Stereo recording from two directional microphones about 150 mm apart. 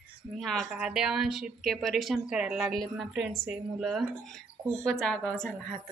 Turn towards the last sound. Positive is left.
turn(degrees=5)  # may be behind; listen again after turning